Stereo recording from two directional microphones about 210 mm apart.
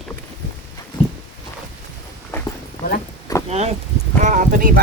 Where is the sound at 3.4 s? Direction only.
30° right (ahead or behind).